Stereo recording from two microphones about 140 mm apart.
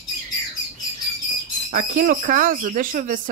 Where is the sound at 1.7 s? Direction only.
75° right (ahead or behind).